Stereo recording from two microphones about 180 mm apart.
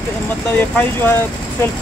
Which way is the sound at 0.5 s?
10° left (ahead or behind).